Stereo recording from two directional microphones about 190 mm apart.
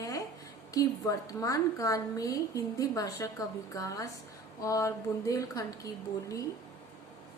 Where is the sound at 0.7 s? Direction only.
15° left (ahead or behind).